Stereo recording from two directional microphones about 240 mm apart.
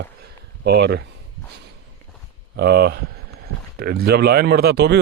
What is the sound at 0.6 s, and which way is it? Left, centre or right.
Speech, right.